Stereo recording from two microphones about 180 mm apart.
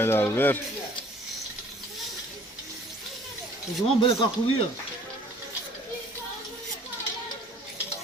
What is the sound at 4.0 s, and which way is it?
Speech, 30° left (ahead or behind).